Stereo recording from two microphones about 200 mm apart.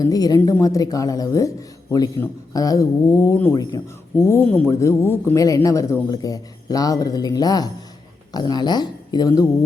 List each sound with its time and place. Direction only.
0.0 s speech: 20° left (ahead or behind)